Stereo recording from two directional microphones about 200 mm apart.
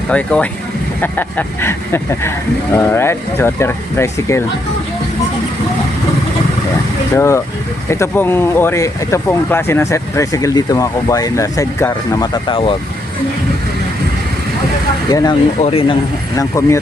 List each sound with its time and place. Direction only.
0.1 s speech: 5° left (ahead or behind)
7.2 s speech: 15° left (ahead or behind)
15.1 s speech: 20° left (ahead or behind)
15.6 s a man's voice: 30° left (ahead or behind)
16.4 s speech: 15° left (ahead or behind)